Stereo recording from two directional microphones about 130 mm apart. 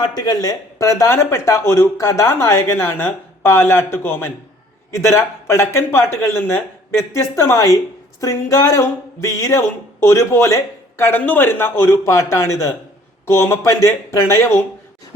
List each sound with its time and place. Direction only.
0.0 s speech: 30° left (ahead or behind)